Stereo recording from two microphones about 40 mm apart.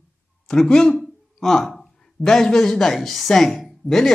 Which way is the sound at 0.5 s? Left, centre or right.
Centre.